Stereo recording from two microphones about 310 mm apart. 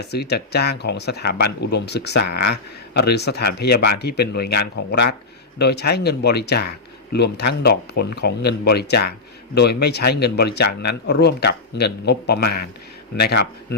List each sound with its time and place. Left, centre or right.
0.0 s speech: left